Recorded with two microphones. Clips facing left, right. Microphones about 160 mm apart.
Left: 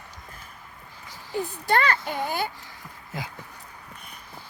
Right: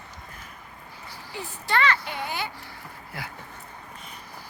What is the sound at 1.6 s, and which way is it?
Speech, 45° left (ahead or behind).